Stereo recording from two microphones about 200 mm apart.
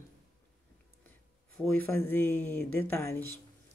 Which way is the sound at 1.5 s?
5° left (ahead or behind).